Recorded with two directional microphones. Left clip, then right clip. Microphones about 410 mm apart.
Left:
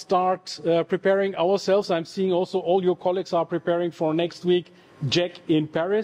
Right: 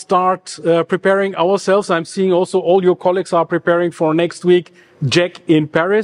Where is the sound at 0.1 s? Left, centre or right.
Right.